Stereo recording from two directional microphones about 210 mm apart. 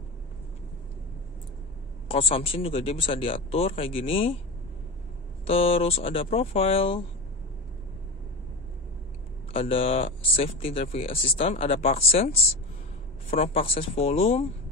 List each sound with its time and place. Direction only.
2.0 s speech: 25° left (ahead or behind)
5.5 s speech: 25° left (ahead or behind)
9.5 s speech: 25° left (ahead or behind)
13.4 s speech: 25° left (ahead or behind)